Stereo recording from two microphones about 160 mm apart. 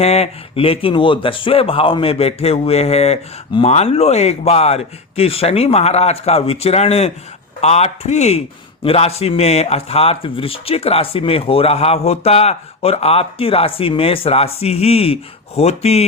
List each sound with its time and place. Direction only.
0.0 s speech: 40° left (ahead or behind)